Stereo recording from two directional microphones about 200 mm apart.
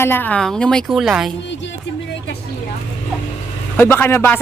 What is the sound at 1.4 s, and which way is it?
Music, 65° left (ahead or behind).